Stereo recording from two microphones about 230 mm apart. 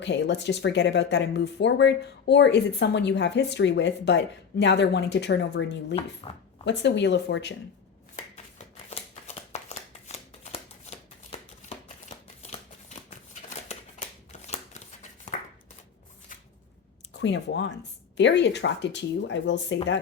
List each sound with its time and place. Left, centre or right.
0.0 s speech: left
6.2 s speech: left
6.7 s speech: left
8.1 s shuffling cards: left
15.3 s a sound: left
17.2 s speech: left